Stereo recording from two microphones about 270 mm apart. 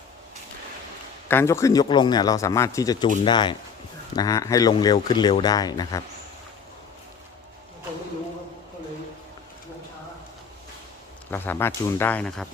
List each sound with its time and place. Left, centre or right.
1.3 s speech: centre
11.3 s speech: centre